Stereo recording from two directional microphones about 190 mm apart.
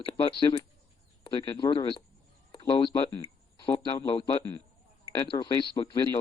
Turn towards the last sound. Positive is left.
turn(degrees=25)  # may be behind; listen again after turning